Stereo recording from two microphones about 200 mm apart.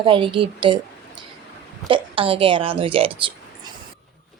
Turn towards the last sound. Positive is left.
turn(degrees=-25)  # may be behind; listen again after turning